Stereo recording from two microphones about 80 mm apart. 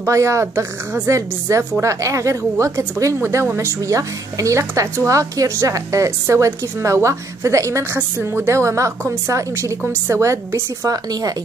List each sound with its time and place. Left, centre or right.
0.0 s a woman's voice: right